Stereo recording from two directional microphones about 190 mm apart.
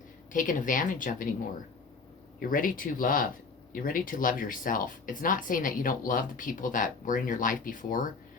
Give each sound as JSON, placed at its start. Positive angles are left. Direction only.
{"t": 0.3, "sound": "speech", "side_deg": 45}
{"t": 2.4, "sound": "speech", "side_deg": 45}